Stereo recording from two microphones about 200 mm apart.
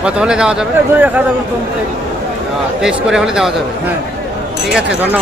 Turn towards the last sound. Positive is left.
turn(degrees=0)  # may be behind; listen again after turning